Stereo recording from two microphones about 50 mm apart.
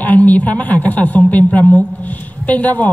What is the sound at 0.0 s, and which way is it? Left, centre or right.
A woman's voice, left.